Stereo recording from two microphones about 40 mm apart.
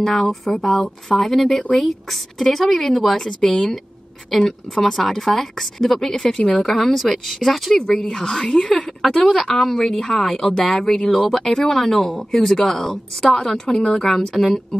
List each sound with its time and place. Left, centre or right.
0.0 s a woman's voice: centre
6.2 s a woman's voice: left
6.6 s a woman's voice: centre
7.7 s speech: centre
9.1 s speech: centre